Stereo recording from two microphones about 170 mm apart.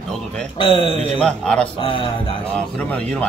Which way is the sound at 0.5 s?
30° left (ahead or behind).